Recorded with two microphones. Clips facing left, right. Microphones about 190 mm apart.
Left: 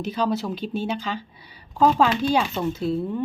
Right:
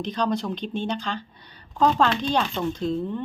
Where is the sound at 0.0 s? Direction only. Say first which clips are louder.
Left 1 dB; 5° left (ahead or behind).